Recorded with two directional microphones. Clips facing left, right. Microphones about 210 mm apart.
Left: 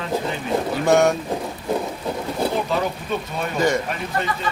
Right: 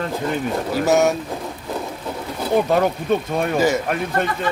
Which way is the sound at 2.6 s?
50° right (ahead or behind).